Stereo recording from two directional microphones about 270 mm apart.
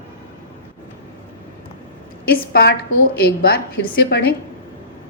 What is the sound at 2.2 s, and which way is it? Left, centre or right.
A woman's voice, left.